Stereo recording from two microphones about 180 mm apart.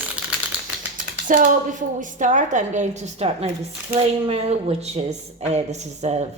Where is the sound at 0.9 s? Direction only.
45° right (ahead or behind).